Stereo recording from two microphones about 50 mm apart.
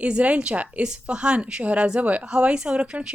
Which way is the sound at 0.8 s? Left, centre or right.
Centre.